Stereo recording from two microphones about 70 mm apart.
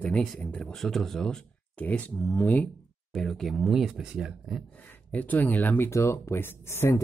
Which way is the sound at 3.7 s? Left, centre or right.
Centre.